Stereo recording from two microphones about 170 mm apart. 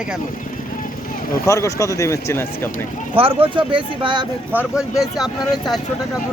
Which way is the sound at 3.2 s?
30° right (ahead or behind).